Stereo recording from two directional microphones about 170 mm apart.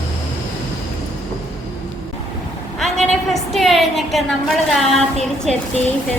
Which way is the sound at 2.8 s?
Centre (ahead or behind).